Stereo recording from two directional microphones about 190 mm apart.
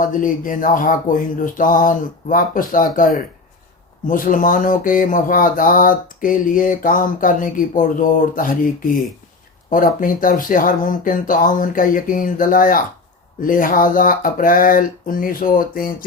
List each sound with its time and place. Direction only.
0.0 s speech: 45° left (ahead or behind)